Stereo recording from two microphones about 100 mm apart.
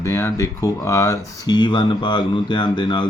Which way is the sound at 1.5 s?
45° left (ahead or behind).